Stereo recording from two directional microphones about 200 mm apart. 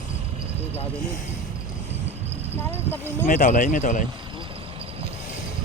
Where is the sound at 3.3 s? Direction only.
40° left (ahead or behind).